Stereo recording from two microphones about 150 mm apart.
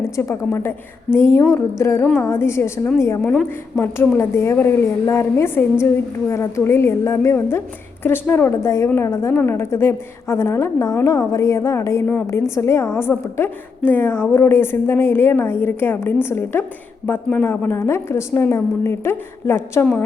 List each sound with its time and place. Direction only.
0.0 s a woman's voice: 15° left (ahead or behind)